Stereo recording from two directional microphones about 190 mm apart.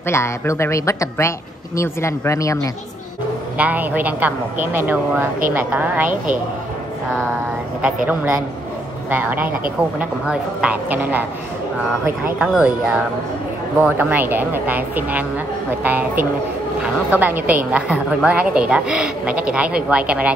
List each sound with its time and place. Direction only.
0.0 s speech: 15° left (ahead or behind)
3.5 s a woman's voice: 10° right (ahead or behind)
8.1 s a woman's voice: 10° right (ahead or behind)
12.4 s a woman's voice: 5° right (ahead or behind)